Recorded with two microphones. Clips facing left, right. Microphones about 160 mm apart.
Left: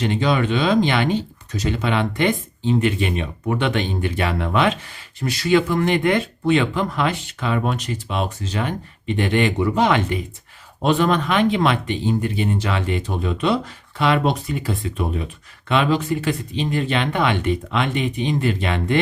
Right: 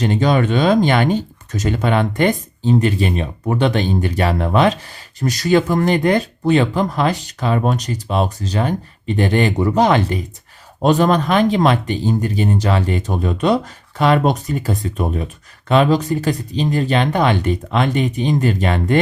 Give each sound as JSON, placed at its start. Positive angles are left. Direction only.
{"t": 0.0, "sound": "speech", "side_deg": -40}